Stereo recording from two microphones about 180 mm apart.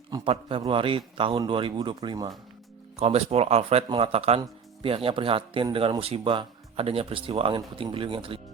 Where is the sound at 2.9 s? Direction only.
35° right (ahead or behind).